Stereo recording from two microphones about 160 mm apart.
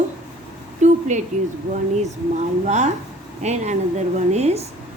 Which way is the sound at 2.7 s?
45° right (ahead or behind).